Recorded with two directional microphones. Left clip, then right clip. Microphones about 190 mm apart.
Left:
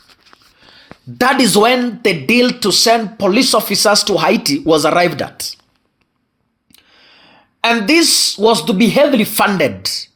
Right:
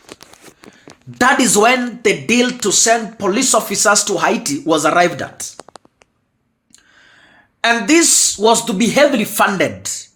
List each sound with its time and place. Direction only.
1.2 s speech: 35° left (ahead or behind)
7.6 s speech: 25° left (ahead or behind)